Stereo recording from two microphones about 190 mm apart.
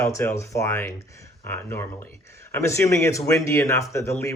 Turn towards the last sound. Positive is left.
turn(degrees=15)  # may be behind; listen again after turning